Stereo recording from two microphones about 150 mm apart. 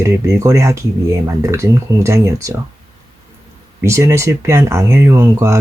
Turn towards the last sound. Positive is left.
turn(degrees=-20)  # may be behind; listen again after turning